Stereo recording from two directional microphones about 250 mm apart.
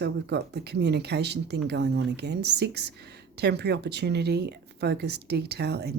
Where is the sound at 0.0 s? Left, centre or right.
Right.